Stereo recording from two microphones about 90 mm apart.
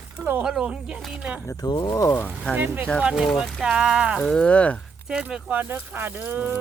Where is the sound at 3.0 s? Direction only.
10° right (ahead or behind).